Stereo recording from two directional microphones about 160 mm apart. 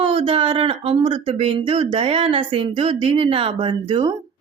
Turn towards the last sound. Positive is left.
turn(degrees=-30)  # may be behind; listen again after turning